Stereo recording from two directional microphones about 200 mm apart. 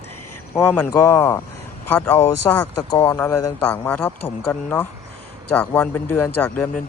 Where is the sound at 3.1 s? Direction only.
10° left (ahead or behind).